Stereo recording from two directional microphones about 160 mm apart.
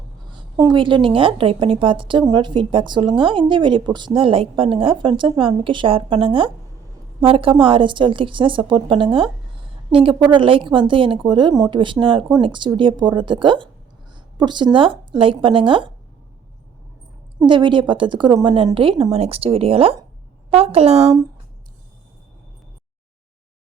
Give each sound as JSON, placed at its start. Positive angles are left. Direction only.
{"t": 0.5, "sound": "a woman's voice", "side_deg": -20}
{"t": 0.8, "sound": "a woman's voice", "side_deg": -30}
{"t": 17.4, "sound": "a woman's voice", "side_deg": -30}